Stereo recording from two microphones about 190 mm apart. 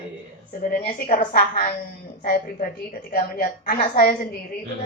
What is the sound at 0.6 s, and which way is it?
A woman's voice, 45° left (ahead or behind).